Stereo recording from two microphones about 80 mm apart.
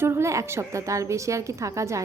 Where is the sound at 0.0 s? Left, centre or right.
Right.